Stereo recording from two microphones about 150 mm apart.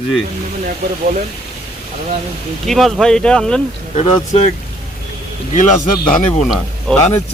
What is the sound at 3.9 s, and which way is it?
Speech, 45° left (ahead or behind).